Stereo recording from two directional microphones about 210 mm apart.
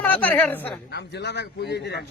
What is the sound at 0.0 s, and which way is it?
Speech, 10° left (ahead or behind).